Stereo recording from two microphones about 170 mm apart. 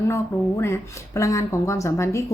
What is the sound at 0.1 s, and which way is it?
A woman's voice, 15° left (ahead or behind).